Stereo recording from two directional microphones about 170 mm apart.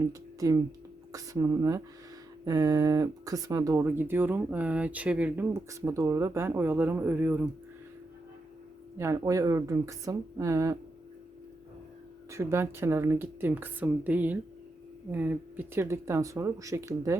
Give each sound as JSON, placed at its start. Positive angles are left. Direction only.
{"t": 0.0, "sound": "speech", "side_deg": -20}
{"t": 9.0, "sound": "speech", "side_deg": -20}
{"t": 12.3, "sound": "speech", "side_deg": -15}